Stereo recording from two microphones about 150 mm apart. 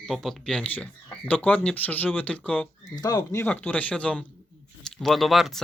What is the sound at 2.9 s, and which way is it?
Speech, 25° left (ahead or behind).